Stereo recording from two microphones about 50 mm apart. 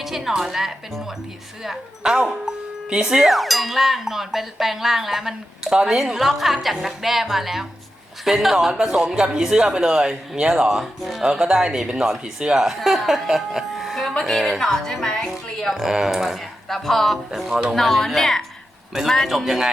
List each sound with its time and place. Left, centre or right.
0.0 s speech: centre
3.2 s speech: centre
14.1 s a woman's voice: centre
14.4 s speech: centre
14.7 s a woman's voice: centre
15.7 s speech: centre
17.3 s speech: centre
17.7 s speech: centre